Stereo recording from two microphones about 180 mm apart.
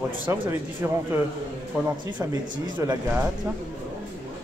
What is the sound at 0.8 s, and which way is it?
Speech, 10° right (ahead or behind).